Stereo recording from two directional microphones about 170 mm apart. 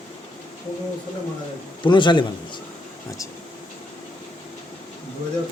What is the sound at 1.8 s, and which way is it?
Speech, 25° left (ahead or behind).